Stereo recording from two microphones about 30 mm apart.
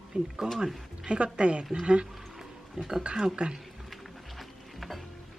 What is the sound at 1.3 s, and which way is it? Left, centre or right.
Speech, right.